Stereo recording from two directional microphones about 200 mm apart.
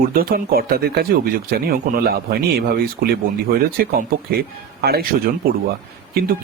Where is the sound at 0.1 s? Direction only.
45° right (ahead or behind).